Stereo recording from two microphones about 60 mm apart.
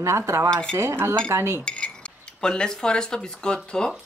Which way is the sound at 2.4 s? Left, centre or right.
Centre.